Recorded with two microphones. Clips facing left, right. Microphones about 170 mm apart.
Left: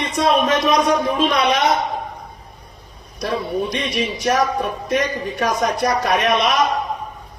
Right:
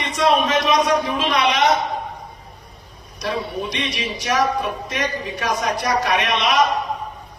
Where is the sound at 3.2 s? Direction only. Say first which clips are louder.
Left 3 dB; 50° left (ahead or behind).